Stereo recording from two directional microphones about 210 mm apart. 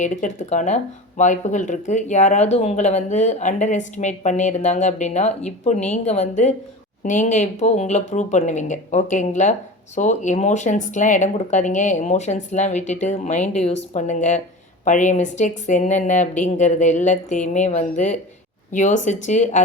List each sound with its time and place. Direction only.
0.0 s speech: 35° left (ahead or behind)